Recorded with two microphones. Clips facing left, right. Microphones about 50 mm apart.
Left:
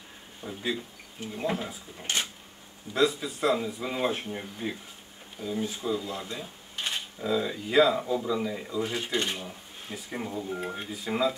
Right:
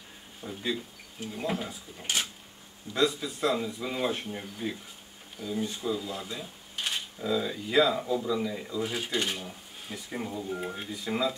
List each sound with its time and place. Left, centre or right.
0.4 s speech: centre